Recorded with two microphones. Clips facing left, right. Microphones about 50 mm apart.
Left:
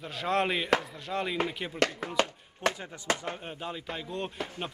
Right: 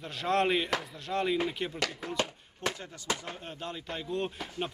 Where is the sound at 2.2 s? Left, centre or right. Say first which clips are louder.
Left 6 dB; left.